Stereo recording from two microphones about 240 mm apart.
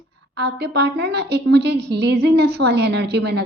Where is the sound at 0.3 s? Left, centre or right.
Right.